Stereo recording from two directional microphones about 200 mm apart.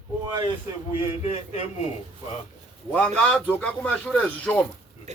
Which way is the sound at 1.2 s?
35° left (ahead or behind).